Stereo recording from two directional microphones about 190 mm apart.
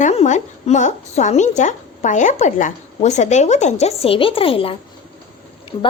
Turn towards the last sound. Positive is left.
turn(degrees=25)  # may be behind; listen again after turning